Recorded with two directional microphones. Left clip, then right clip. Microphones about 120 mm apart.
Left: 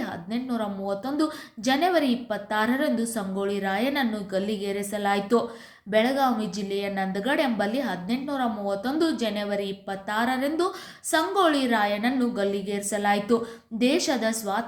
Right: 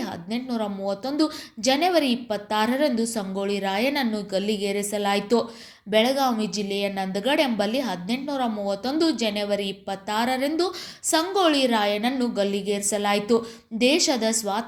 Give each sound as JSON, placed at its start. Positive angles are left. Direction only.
{"t": 0.0, "sound": "a woman's voice", "side_deg": -30}